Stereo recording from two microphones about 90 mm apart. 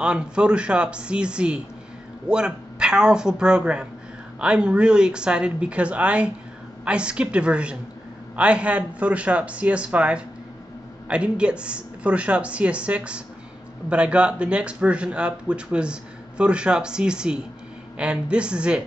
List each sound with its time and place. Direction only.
0.0 s speech: 10° right (ahead or behind)